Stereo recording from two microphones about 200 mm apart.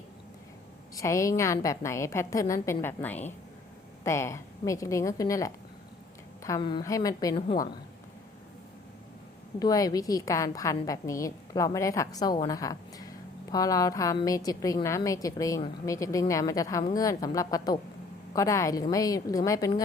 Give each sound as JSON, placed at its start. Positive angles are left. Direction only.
{"t": 0.9, "sound": "a woman's voice", "side_deg": 15}
{"t": 9.6, "sound": "a woman's voice", "side_deg": 20}